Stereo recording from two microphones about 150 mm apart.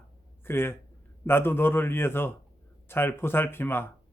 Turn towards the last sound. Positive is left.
turn(degrees=15)  # may be behind; listen again after turning